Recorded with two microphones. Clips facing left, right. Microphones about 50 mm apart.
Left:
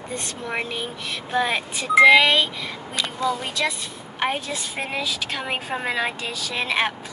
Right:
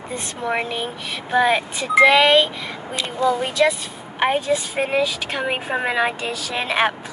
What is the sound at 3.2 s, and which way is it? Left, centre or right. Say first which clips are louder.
A woman's voice: right 7 dB; right.